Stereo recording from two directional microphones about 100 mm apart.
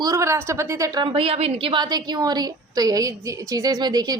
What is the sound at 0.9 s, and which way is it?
A woman's voice, 60° right (ahead or behind).